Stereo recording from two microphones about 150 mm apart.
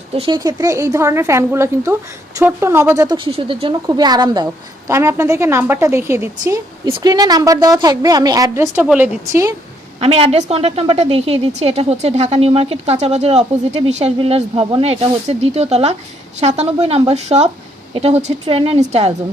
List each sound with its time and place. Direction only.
0.1 s a woman's voice: 35° right (ahead or behind)
3.2 s a woman's voice: 35° right (ahead or behind); by 6.6 s 20° right (ahead or behind)
6.8 s a woman's voice: 30° right (ahead or behind)
10.0 s a woman's voice: 40° right (ahead or behind)